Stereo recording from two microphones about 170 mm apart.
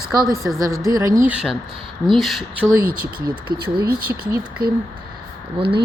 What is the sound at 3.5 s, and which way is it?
Speech, 30° right (ahead or behind).